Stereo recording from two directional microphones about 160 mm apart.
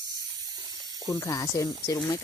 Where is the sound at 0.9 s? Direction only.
20° left (ahead or behind).